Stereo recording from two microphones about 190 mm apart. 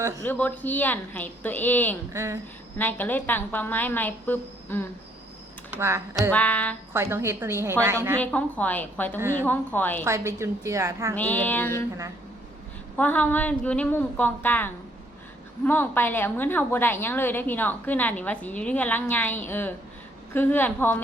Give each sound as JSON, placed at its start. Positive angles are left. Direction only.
{"t": 0.3, "sound": "a woman's voice", "side_deg": 10}
{"t": 2.1, "sound": "a woman's voice", "side_deg": -15}
{"t": 2.7, "sound": "a woman's voice", "side_deg": 10}
{"t": 5.7, "sound": "speech", "side_deg": -15}
{"t": 6.3, "sound": "a woman's voice", "side_deg": 10}
{"t": 6.9, "sound": "a woman's voice", "side_deg": -15}
{"t": 8.2, "sound": "a woman's voice", "side_deg": 10}
{"t": 9.1, "sound": "a woman's voice", "side_deg": -15}
{"t": 9.5, "sound": "a woman's voice", "side_deg": 10}
{"t": 10.1, "sound": "a woman's voice", "side_deg": -15}
{"t": 11.1, "sound": "a woman's voice", "side_deg": 10}
{"t": 13.0, "sound": "a woman's voice", "side_deg": 10}